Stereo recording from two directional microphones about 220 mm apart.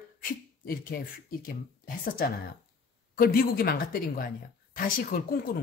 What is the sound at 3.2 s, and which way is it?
Speech, 40° left (ahead or behind).